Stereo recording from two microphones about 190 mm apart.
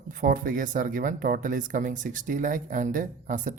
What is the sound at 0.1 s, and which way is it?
Speech, 50° right (ahead or behind).